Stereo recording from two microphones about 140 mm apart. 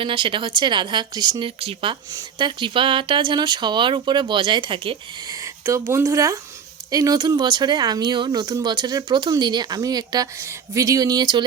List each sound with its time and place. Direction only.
0.0 s speech: 35° right (ahead or behind)
5.3 s speech: 20° right (ahead or behind)